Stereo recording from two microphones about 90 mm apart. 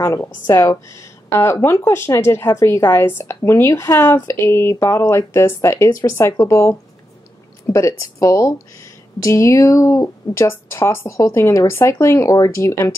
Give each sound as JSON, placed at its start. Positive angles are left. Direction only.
{"t": 0.0, "sound": "speech", "side_deg": 35}
{"t": 7.7, "sound": "speech", "side_deg": 35}